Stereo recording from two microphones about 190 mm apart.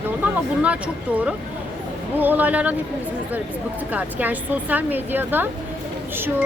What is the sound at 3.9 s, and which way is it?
A woman's voice, 10° right (ahead or behind).